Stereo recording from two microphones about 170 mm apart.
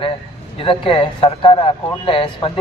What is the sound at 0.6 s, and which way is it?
A man's voice, 30° left (ahead or behind).